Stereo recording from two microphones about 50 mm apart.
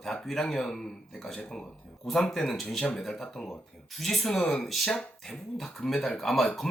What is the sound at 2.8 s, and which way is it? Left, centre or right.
Speech, centre.